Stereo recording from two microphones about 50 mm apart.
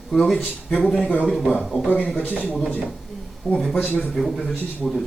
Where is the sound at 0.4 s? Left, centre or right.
Left.